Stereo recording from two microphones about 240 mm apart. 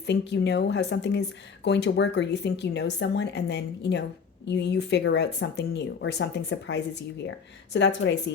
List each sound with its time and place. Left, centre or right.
0.0 s speech: left